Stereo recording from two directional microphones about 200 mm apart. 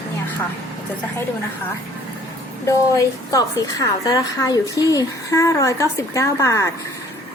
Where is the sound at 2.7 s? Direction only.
15° left (ahead or behind).